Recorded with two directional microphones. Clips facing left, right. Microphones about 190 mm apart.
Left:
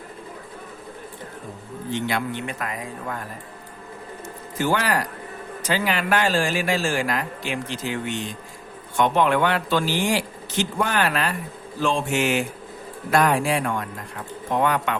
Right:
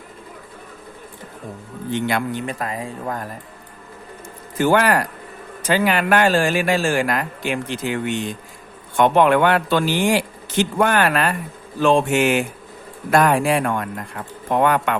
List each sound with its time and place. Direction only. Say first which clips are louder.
1.9 s a man's voice: right 4 dB; 55° right (ahead or behind)
2.5 s speech: right 4 dB; 35° right (ahead or behind)
4.5 s a man's voice: right 6 dB; 55° right (ahead or behind)